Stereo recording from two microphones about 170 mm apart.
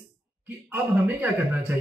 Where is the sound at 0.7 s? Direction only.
10° right (ahead or behind).